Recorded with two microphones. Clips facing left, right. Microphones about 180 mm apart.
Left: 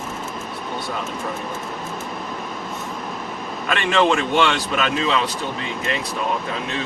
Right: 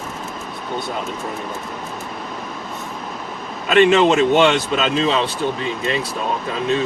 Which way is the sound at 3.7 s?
20° right (ahead or behind).